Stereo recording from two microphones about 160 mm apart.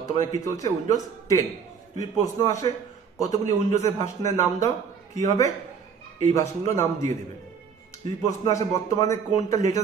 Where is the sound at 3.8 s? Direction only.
50° right (ahead or behind).